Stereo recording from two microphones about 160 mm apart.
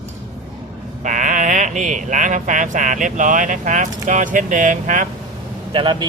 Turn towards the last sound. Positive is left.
turn(degrees=-30)  # may be behind; listen again after turning